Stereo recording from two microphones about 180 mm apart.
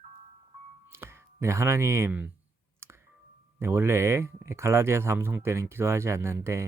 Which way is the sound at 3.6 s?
15° right (ahead or behind).